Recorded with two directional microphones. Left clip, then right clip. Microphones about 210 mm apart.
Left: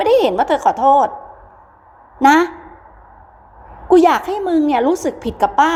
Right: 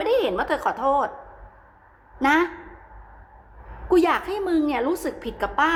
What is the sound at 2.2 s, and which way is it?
Speech, 20° left (ahead or behind).